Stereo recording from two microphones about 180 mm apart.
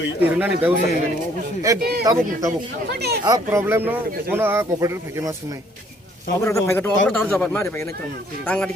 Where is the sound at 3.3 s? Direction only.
20° right (ahead or behind).